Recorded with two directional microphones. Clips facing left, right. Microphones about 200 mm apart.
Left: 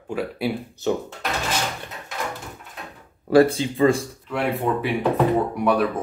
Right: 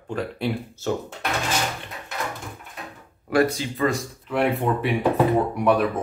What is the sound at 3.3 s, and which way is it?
Speech, 30° left (ahead or behind).